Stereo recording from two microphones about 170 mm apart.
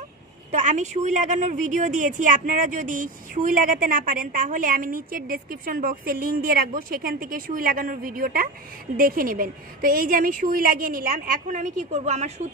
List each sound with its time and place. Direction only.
0.5 s a woman's voice: 45° right (ahead or behind)